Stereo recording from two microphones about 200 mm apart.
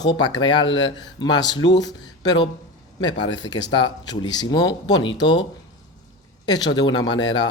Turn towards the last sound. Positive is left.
turn(degrees=20)  # may be behind; listen again after turning